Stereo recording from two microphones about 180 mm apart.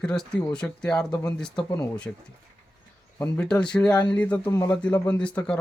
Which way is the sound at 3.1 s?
15° left (ahead or behind).